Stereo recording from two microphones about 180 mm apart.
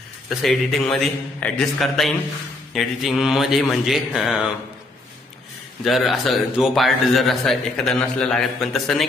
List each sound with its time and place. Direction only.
0.3 s a man's voice: centre (ahead or behind)
5.9 s a man's voice: centre (ahead or behind)